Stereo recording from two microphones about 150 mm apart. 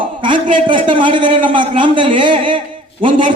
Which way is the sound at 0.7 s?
35° right (ahead or behind).